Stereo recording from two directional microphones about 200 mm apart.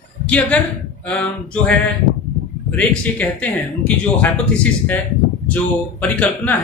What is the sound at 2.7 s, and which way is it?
Speech, 5° left (ahead or behind).